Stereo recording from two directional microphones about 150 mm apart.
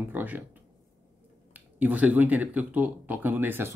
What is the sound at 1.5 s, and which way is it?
Speech, 10° right (ahead or behind).